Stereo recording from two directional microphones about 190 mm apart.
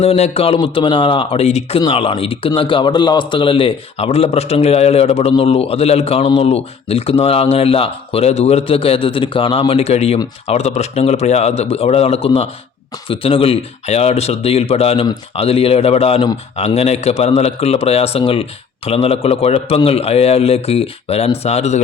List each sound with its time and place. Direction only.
0.0 s a man's voice: 30° left (ahead or behind)